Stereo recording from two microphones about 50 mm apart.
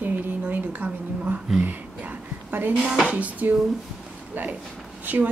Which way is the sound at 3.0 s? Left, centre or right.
Right.